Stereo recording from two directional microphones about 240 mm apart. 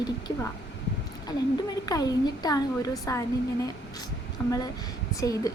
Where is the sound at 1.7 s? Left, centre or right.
Centre.